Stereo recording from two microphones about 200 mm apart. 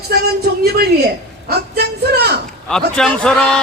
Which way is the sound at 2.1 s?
55° right (ahead or behind).